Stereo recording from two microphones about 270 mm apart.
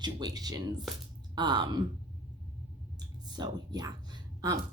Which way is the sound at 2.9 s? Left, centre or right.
Centre.